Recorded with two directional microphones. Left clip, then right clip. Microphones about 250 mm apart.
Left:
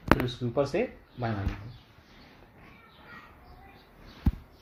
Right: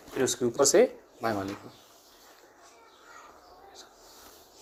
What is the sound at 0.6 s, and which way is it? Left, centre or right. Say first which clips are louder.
Speech: right 8 dB; right.